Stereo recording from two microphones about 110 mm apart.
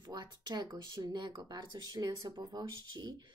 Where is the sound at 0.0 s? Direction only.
40° right (ahead or behind).